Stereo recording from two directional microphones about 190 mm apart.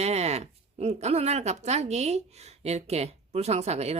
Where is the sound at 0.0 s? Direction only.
35° right (ahead or behind).